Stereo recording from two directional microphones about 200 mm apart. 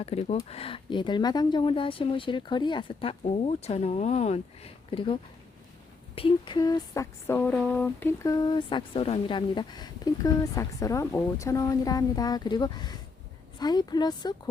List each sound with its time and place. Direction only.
0.0 s speech: 30° left (ahead or behind)
6.1 s speech: 25° left (ahead or behind)